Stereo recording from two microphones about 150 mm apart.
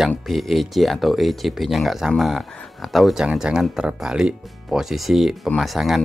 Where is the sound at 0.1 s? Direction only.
Centre (ahead or behind).